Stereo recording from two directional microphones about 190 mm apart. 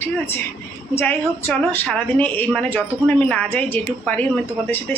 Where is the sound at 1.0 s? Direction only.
10° left (ahead or behind).